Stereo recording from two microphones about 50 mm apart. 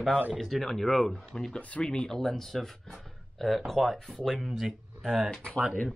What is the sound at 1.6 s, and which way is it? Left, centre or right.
Speech, left.